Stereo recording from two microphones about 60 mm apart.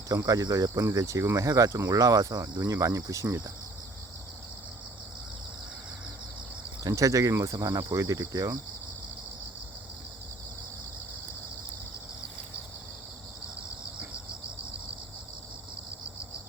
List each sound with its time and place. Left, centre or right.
0.1 s speech: right
6.8 s speech: right